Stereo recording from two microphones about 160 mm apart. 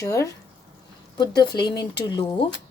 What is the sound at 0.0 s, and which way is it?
A woman's voice, 20° left (ahead or behind).